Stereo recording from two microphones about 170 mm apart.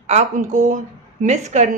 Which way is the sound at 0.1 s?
45° right (ahead or behind).